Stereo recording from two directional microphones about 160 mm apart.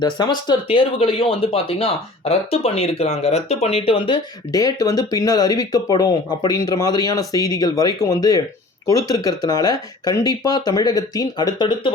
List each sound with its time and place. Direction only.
0.0 s speech: 25° left (ahead or behind)